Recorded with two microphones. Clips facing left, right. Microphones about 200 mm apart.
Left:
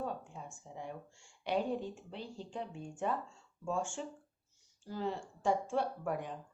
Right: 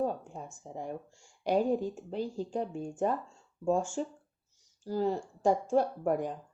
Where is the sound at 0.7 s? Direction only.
45° right (ahead or behind).